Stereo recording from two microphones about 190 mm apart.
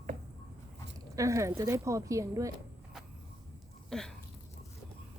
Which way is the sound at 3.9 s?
5° left (ahead or behind).